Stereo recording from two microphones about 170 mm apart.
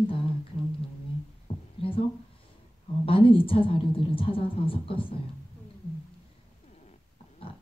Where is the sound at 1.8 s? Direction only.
35° left (ahead or behind).